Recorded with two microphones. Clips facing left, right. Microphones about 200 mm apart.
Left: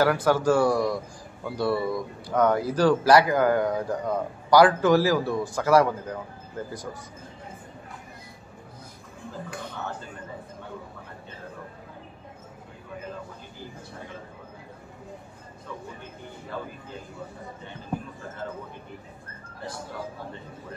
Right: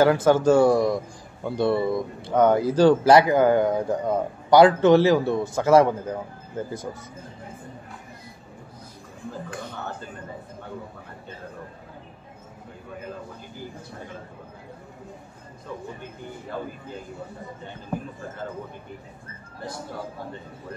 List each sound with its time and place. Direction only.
0.0 s speech: 20° right (ahead or behind)